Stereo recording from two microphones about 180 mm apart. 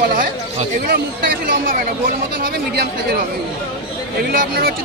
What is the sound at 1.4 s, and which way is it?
Speech, 55° right (ahead or behind).